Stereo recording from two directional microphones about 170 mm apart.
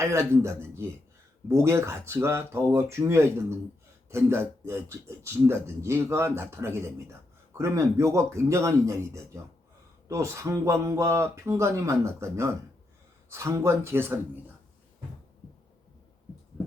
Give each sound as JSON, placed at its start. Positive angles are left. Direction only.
{"t": 0.0, "sound": "speech", "side_deg": -15}